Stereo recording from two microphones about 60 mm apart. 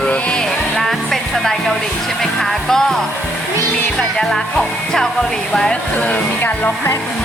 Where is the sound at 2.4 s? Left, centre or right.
Centre.